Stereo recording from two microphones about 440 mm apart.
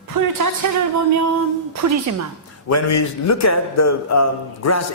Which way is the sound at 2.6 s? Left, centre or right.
Left.